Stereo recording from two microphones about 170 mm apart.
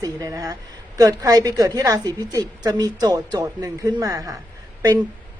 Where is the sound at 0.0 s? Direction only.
20° right (ahead or behind).